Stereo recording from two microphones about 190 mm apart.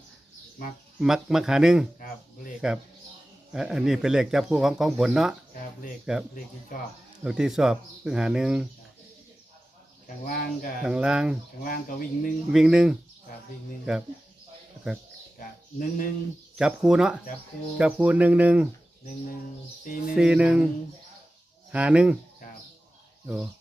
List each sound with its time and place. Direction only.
0.9 s speech: centre (ahead or behind)
6.7 s speech: 45° left (ahead or behind)
7.3 s speech: 5° right (ahead or behind)
10.2 s speech: 45° left (ahead or behind)
10.8 s speech: 5° right (ahead or behind)
11.6 s speech: 45° left (ahead or behind)
12.5 s speech: 5° right (ahead or behind)
14.8 s speech: centre (ahead or behind)
15.4 s speech: 45° left (ahead or behind)
16.6 s speech: 5° right (ahead or behind)
20.1 s speech: 5° right (ahead or behind)
21.7 s speech: 5° right (ahead or behind)
23.2 s speech: 5° right (ahead or behind)